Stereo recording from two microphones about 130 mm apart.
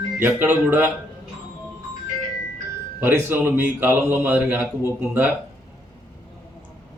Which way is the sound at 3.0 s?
15° right (ahead or behind).